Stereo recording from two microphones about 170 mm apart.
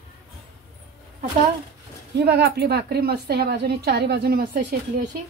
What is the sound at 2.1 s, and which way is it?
A woman's voice, 75° right (ahead or behind).